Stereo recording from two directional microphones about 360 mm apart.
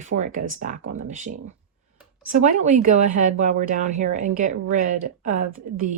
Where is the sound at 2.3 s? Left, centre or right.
Right.